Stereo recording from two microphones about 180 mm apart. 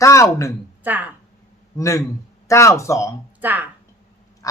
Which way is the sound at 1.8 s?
15° left (ahead or behind).